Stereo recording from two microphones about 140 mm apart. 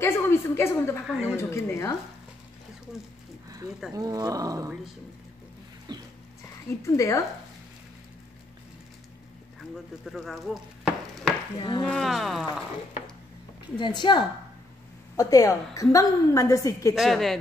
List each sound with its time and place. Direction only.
0.0 s a sound: 15° left (ahead or behind)
1.0 s speech: 5° right (ahead or behind)
1.3 s a woman's voice: 20° left (ahead or behind)
3.9 s speech: 25° right (ahead or behind)
5.9 s dog: 30° right (ahead or behind)
6.8 s a woman's voice: 20° left (ahead or behind)
10.0 s stir: centre (ahead or behind)
11.8 s speech: centre (ahead or behind)
13.7 s a woman's voice: 35° left (ahead or behind)
16.9 s speech: centre (ahead or behind)